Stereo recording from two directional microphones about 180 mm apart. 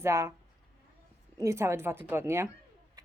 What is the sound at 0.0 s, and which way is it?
Speech, 15° right (ahead or behind).